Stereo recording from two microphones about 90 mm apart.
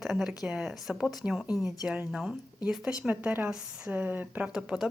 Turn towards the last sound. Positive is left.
turn(degrees=-5)  # may be behind; listen again after turning